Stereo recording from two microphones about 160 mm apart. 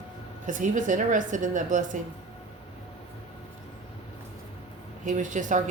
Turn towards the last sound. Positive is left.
turn(degrees=-50)  # may be behind; listen again after turning